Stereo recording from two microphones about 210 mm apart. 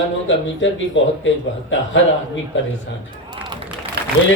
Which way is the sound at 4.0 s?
50° right (ahead or behind).